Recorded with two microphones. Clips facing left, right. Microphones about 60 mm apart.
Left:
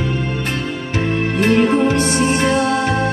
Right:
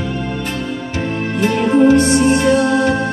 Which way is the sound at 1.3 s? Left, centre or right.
Left.